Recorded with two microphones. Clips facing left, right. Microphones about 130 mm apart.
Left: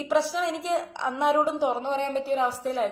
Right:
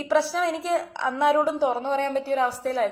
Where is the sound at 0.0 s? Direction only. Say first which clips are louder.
Right 2 dB; 15° left (ahead or behind).